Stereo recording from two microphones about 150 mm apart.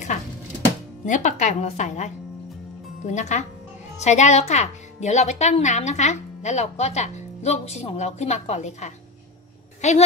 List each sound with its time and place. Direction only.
1.0 s a woman's voice: 55° left (ahead or behind)